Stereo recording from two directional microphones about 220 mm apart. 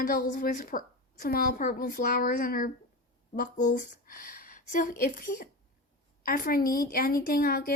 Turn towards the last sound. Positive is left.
turn(degrees=40)  # may be behind; listen again after turning